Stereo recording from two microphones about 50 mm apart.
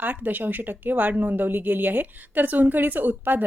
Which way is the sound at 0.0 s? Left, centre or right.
Right.